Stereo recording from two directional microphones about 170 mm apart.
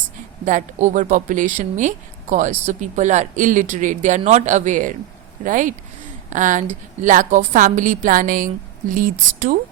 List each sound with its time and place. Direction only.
0.4 s a woman's voice: 45° right (ahead or behind)